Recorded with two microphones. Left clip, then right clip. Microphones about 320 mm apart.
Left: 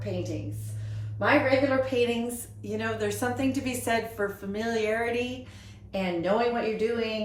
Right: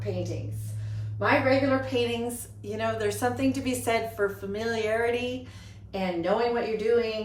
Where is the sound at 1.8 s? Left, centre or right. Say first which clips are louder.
Left 2 dB; centre.